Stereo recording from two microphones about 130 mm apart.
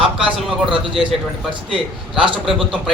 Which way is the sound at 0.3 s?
5° right (ahead or behind).